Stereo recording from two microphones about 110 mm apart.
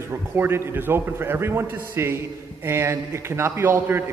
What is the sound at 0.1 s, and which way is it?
A man's voice, 20° right (ahead or behind).